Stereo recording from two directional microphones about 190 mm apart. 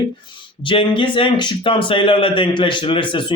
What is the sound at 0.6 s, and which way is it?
A man's voice, 25° left (ahead or behind).